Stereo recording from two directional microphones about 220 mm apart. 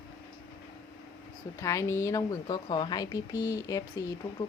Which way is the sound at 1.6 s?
15° left (ahead or behind).